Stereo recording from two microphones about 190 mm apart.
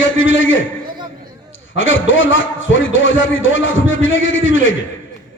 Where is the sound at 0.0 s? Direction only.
90° left.